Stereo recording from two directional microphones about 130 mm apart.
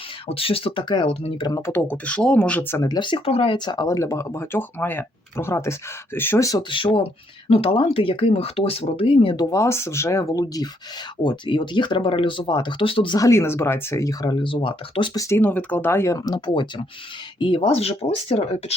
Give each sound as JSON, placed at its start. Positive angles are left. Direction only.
{"t": 0.3, "sound": "speech", "side_deg": 45}
{"t": 1.0, "sound": "speech", "side_deg": 50}
{"t": 1.5, "sound": "speech", "side_deg": 30}
{"t": 1.7, "sound": "speech", "side_deg": 10}
{"t": 2.9, "sound": "speech", "side_deg": 40}
{"t": 6.6, "sound": "speech", "side_deg": 40}
{"t": 13.1, "sound": "speech", "side_deg": 25}
{"t": 15.1, "sound": "speech", "side_deg": 25}
{"t": 15.4, "sound": "speech", "side_deg": 15}